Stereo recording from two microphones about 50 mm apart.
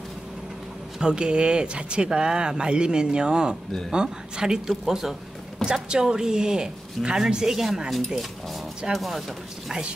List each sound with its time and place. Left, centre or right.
0.9 s speech: centre
8.9 s speech: centre